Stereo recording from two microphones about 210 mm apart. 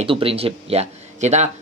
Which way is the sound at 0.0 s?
25° right (ahead or behind).